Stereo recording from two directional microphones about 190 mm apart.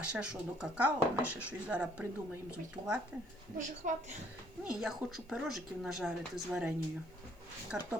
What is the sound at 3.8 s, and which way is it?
Speech, 45° right (ahead or behind).